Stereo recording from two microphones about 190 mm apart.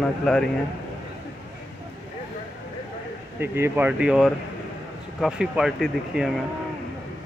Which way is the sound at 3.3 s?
10° right (ahead or behind).